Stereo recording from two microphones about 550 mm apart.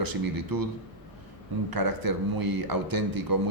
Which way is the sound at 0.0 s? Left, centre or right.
Right.